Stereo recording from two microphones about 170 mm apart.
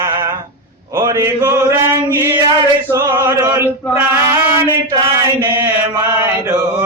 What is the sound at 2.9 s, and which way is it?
Chant, 15° right (ahead or behind).